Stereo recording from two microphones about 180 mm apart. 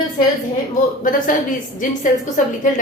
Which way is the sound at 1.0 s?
45° left (ahead or behind).